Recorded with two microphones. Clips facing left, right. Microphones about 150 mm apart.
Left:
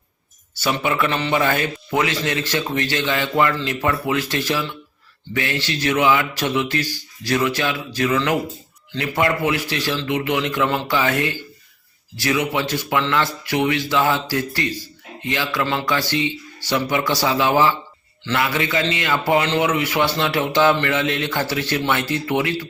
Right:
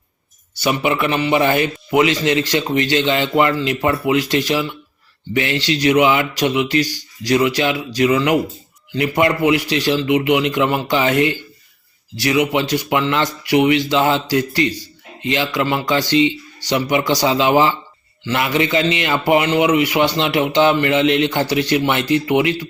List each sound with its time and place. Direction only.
0.5 s speech: 15° right (ahead or behind)